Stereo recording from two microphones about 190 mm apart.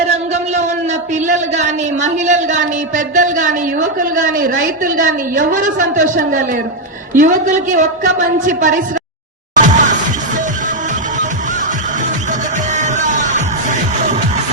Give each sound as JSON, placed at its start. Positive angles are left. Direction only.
{"t": 1.3, "sound": "a man's voice", "side_deg": -40}
{"t": 9.6, "sound": "music", "side_deg": -40}
{"t": 12.7, "sound": "music", "side_deg": -40}